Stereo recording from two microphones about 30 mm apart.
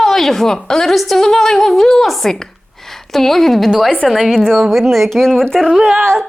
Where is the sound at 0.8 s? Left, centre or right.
Centre.